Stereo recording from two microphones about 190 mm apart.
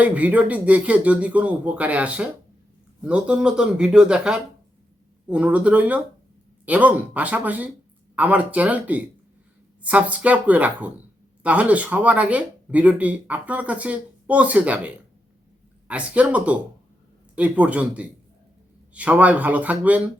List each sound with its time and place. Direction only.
0.0 s speech: 5° right (ahead or behind)